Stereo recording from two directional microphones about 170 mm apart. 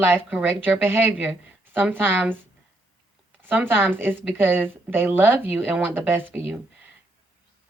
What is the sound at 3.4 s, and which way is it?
A woman's voice, 10° right (ahead or behind).